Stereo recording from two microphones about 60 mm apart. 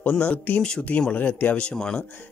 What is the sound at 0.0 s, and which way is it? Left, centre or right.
Speech, left.